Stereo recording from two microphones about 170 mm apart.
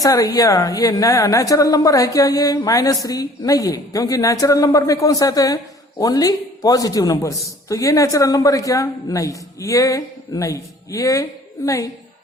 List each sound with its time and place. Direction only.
0.0 s a man's voice: 20° left (ahead or behind)